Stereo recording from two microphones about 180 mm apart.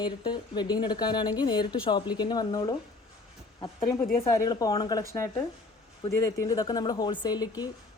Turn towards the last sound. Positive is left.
turn(degrees=20)  # may be behind; listen again after turning